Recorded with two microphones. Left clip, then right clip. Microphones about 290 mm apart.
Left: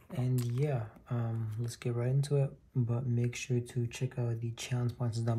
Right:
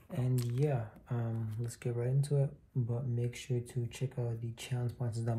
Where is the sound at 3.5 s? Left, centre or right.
Centre.